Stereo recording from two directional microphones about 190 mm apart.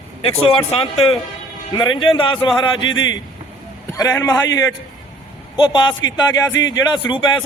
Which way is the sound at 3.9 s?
15° left (ahead or behind).